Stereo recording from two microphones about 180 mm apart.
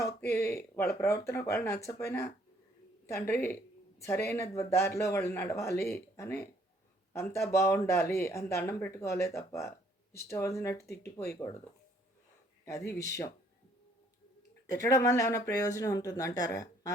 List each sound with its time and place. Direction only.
0.0 s speech: 15° left (ahead or behind)
12.6 s speech: 15° left (ahead or behind)
14.7 s speech: 20° left (ahead or behind)